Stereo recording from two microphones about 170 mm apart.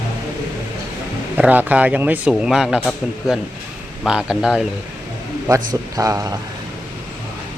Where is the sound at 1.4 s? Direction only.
10° right (ahead or behind).